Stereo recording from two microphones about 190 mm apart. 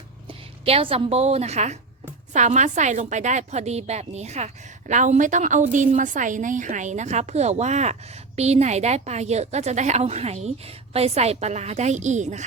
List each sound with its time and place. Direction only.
0.3 s a woman's voice: 30° right (ahead or behind)